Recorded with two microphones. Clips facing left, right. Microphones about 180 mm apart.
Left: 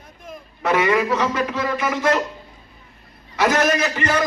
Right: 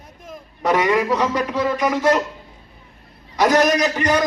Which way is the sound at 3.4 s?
15° right (ahead or behind).